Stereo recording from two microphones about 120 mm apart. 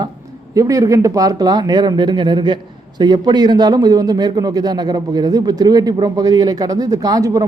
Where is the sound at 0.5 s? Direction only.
30° right (ahead or behind).